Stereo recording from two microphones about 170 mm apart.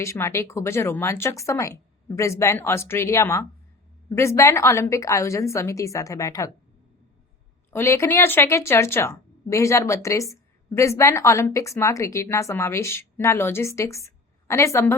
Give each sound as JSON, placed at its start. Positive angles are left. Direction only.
{"t": 0.0, "sound": "a woman's voice", "side_deg": 15}
{"t": 7.7, "sound": "a woman's voice", "side_deg": 15}